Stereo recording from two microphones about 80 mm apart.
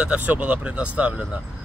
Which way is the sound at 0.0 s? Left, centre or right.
Centre.